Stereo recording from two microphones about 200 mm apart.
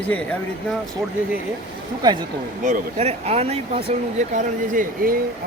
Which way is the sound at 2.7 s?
30° right (ahead or behind).